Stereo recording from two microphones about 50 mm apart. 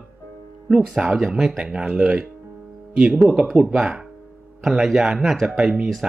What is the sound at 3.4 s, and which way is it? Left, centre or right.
Speech, centre.